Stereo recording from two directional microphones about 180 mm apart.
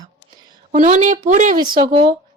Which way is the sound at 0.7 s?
40° right (ahead or behind).